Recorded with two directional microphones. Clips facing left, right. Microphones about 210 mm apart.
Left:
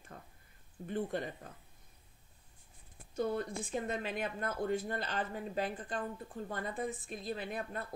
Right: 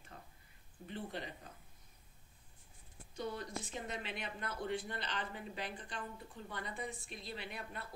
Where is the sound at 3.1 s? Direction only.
50° left (ahead or behind).